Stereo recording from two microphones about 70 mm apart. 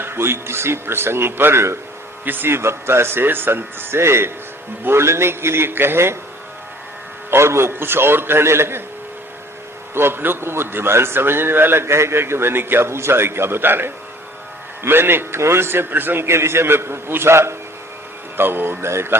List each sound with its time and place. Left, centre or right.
0.0 s a man's voice: right
7.3 s a man's voice: right
9.9 s a man's voice: right